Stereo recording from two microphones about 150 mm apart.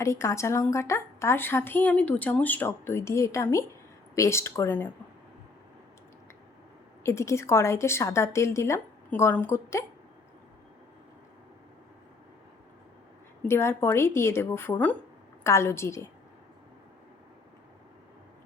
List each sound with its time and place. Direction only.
0.0 s a woman's voice: 20° left (ahead or behind)
7.0 s a woman's voice: 20° left (ahead or behind)
13.5 s a woman's voice: 15° left (ahead or behind)